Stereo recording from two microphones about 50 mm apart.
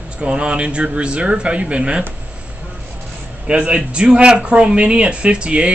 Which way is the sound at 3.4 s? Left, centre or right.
Centre.